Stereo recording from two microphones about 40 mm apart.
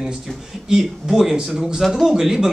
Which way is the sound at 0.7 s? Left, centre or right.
Centre.